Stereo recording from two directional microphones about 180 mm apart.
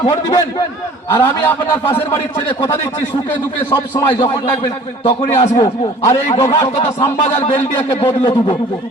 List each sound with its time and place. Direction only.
1.1 s a man's voice: 10° left (ahead or behind)
3.7 s a man's voice: 20° left (ahead or behind)